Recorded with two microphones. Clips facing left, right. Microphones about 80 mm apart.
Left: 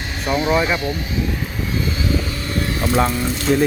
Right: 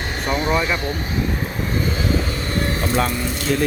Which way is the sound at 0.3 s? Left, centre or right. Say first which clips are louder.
Left 3 dB; centre.